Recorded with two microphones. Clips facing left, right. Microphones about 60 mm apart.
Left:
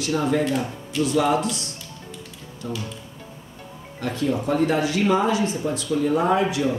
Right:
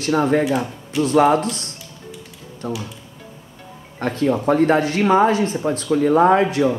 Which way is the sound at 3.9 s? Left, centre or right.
Right.